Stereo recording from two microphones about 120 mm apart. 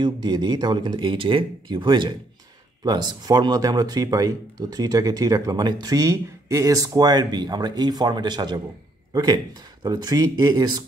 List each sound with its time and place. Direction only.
0.0 s speech: 35° right (ahead or behind)